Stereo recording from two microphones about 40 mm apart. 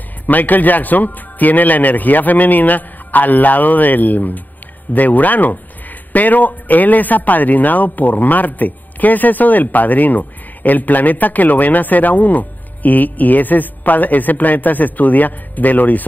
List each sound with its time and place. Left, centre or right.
0.3 s a man's voice: left